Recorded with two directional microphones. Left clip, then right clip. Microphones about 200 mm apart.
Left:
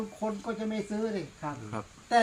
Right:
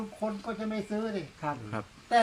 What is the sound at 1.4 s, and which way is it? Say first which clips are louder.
Speech: right 6 dB; 50° right (ahead or behind).